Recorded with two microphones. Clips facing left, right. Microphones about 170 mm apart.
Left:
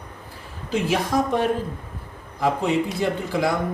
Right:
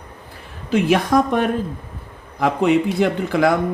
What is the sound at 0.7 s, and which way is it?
Speech, 60° right (ahead or behind).